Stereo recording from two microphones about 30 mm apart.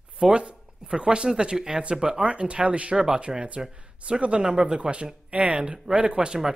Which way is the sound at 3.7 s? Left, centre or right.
Right.